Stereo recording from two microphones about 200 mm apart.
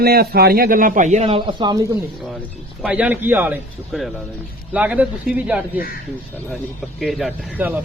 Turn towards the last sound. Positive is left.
turn(degrees=-5)  # may be behind; listen again after turning